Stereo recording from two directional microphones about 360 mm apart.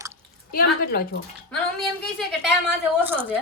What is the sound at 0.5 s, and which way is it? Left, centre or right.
Speech, left.